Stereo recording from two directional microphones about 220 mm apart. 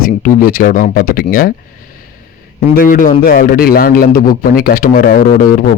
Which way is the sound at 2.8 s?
40° left (ahead or behind).